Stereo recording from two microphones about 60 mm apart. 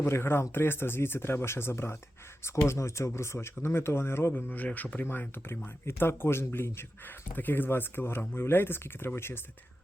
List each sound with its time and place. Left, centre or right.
0.0 s speech: left
4.4 s speech: left
5.3 s speech: left